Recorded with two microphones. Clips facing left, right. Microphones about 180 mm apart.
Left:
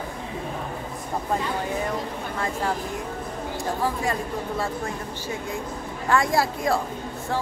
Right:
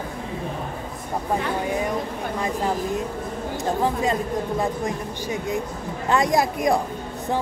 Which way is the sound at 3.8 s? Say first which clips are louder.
Right 3 dB; 20° right (ahead or behind).